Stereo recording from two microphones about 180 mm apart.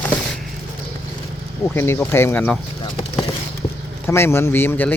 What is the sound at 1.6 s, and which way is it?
Speech, 15° left (ahead or behind).